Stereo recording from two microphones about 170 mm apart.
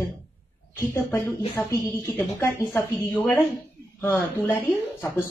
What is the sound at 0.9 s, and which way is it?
Speech, 15° left (ahead or behind).